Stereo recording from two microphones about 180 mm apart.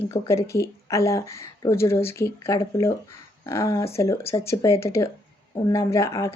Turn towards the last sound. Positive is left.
turn(degrees=15)  # may be behind; listen again after turning